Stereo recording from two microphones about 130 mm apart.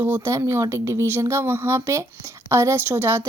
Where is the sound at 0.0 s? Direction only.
20° right (ahead or behind).